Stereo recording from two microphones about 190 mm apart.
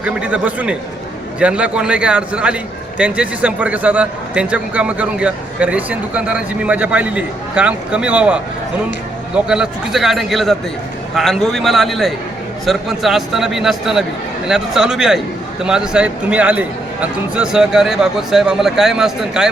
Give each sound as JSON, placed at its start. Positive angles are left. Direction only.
{"t": 0.0, "sound": "a man's voice", "side_deg": -5}